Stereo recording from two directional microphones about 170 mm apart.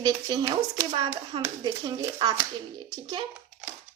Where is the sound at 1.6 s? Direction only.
25° right (ahead or behind).